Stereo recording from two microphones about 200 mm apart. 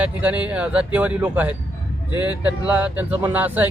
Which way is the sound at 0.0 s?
5° right (ahead or behind).